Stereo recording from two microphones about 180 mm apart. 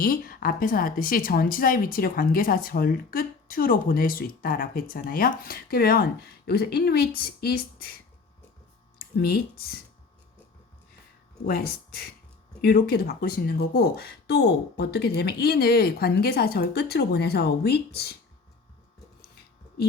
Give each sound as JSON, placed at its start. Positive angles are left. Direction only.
{"t": 0.0, "sound": "a woman's voice", "side_deg": 50}
{"t": 9.0, "sound": "speech", "side_deg": 60}
{"t": 11.4, "sound": "speech", "side_deg": 55}